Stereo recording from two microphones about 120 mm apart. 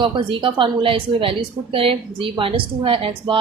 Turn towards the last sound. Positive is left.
turn(degrees=-50)  # may be behind; listen again after turning